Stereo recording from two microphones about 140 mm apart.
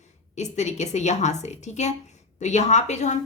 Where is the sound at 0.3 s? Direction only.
55° left (ahead or behind).